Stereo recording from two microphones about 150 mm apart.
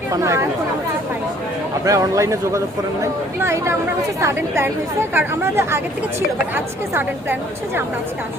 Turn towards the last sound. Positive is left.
turn(degrees=-15)  # may be behind; listen again after turning